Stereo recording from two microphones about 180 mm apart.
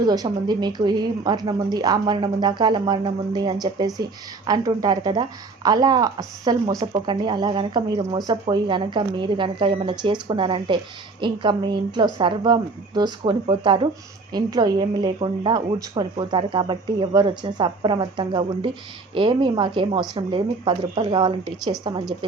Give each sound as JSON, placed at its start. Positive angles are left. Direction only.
{"t": 0.0, "sound": "speech", "side_deg": -20}